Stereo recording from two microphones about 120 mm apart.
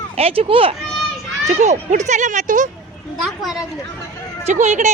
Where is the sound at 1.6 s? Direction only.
75° right (ahead or behind).